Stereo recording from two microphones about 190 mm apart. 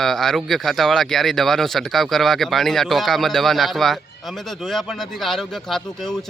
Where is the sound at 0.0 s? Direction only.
Centre (ahead or behind).